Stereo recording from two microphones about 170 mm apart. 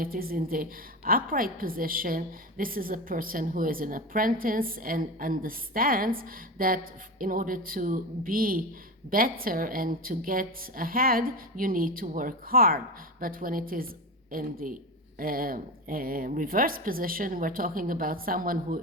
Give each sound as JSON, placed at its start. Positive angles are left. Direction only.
{"t": 0.0, "sound": "a woman's voice", "side_deg": -60}